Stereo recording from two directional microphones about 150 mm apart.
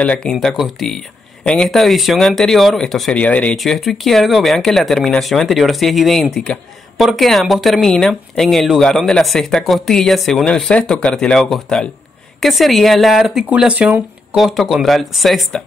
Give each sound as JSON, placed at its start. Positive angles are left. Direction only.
{"t": 0.0, "sound": "speech", "side_deg": 5}